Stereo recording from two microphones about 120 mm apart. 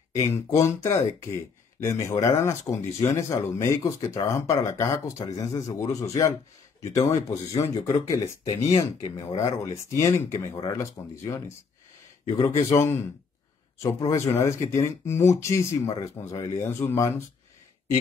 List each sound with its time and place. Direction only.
0.1 s speech: 25° left (ahead or behind)
12.6 s speech: 20° left (ahead or behind)